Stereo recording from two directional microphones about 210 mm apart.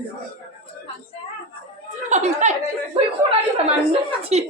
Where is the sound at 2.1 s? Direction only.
35° right (ahead or behind).